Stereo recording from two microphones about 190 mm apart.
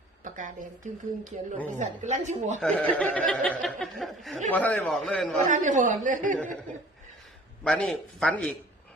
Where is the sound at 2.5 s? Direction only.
5° left (ahead or behind).